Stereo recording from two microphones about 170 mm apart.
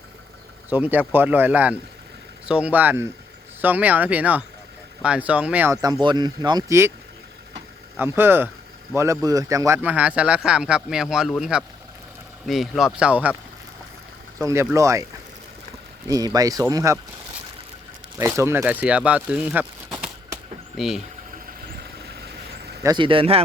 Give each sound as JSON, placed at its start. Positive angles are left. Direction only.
{"t": 0.7, "sound": "speech", "side_deg": -10}
{"t": 7.9, "sound": "speech", "side_deg": -10}
{"t": 14.3, "sound": "speech", "side_deg": -15}
{"t": 16.0, "sound": "speech", "side_deg": -20}
{"t": 18.2, "sound": "speech", "side_deg": -15}
{"t": 22.8, "sound": "speech", "side_deg": -25}